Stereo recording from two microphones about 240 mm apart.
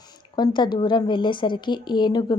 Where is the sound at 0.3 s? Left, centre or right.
Centre.